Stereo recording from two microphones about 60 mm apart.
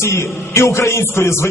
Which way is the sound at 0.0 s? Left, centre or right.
Left.